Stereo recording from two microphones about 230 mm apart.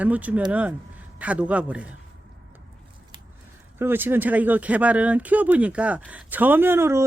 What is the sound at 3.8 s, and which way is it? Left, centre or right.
Speech, centre.